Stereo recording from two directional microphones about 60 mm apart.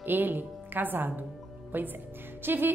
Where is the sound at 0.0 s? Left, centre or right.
Right.